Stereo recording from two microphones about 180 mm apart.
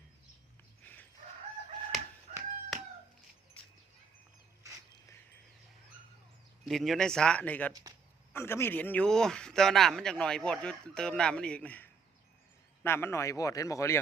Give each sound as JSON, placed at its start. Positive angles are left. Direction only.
{"t": 0.8, "sound": "fowl", "side_deg": 10}
{"t": 2.3, "sound": "chicken", "side_deg": -40}
{"t": 6.7, "sound": "speech", "side_deg": 0}